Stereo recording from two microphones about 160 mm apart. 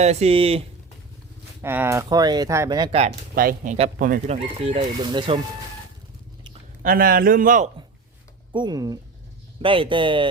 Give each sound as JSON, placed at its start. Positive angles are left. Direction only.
{"t": 0.0, "sound": "speech", "side_deg": -45}
{"t": 1.6, "sound": "speech", "side_deg": -15}
{"t": 3.3, "sound": "a man's voice", "side_deg": -60}
{"t": 4.3, "sound": "speech", "side_deg": -35}
{"t": 6.8, "sound": "a man's voice", "side_deg": -65}
{"t": 8.5, "sound": "speech", "side_deg": -25}